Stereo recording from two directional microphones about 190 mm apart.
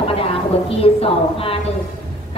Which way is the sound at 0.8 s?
30° left (ahead or behind).